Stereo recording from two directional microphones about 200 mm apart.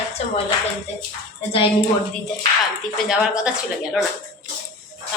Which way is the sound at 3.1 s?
5° right (ahead or behind).